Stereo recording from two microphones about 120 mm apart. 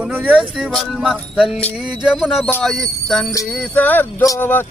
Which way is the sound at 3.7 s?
15° left (ahead or behind).